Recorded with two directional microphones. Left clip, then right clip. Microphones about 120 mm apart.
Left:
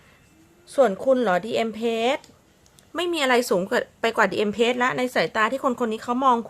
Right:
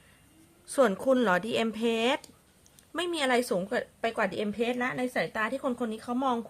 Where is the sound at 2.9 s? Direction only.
5° left (ahead or behind).